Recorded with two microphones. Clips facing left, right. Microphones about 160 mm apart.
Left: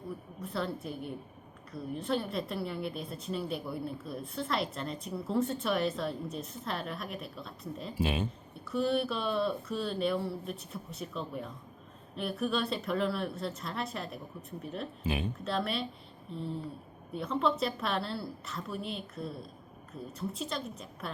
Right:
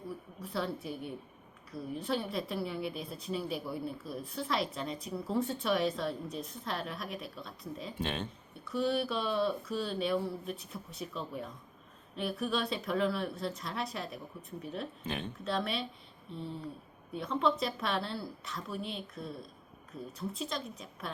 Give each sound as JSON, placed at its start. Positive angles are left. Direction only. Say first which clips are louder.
{"t": 0.4, "sound": "a woman's voice", "louder": "left 1 dB", "side_deg": 0}